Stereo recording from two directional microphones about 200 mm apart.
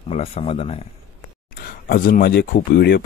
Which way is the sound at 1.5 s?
50° left (ahead or behind).